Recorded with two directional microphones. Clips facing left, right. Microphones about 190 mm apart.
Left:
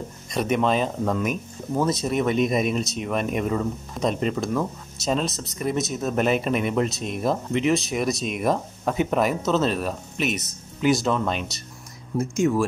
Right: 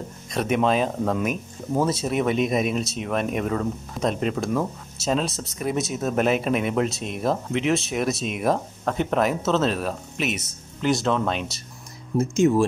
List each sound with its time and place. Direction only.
0.3 s speech: centre (ahead or behind)
12.2 s speech: 25° right (ahead or behind)